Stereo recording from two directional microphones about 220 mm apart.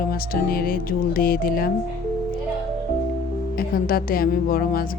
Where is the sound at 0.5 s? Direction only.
45° left (ahead or behind).